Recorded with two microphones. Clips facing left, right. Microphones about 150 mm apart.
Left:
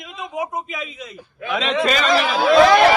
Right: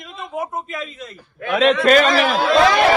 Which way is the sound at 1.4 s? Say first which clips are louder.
Right 5 dB; 55° right (ahead or behind).